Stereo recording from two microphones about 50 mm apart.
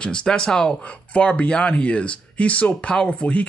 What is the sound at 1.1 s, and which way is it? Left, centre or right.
Speech, left.